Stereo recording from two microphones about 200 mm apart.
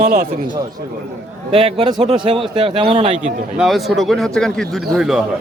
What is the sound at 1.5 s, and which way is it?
Speech, 30° right (ahead or behind).